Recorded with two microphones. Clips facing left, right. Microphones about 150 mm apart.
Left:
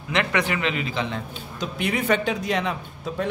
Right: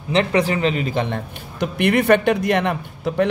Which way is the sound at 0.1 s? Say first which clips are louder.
Right 6 dB; 30° right (ahead or behind).